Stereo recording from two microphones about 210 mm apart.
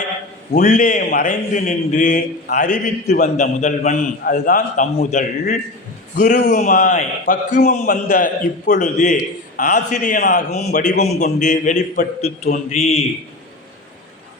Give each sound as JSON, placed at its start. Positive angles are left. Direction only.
{"t": 0.5, "sound": "a man's voice", "side_deg": 35}